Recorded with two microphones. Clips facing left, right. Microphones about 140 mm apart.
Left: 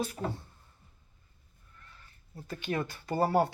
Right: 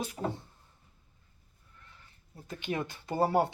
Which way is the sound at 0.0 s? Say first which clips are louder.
Even; 20° right (ahead or behind).